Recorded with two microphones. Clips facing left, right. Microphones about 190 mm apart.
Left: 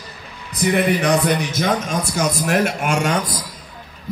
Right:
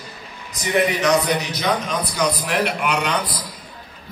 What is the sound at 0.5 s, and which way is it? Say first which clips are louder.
A man's voice: left 2 dB; 55° left (ahead or behind).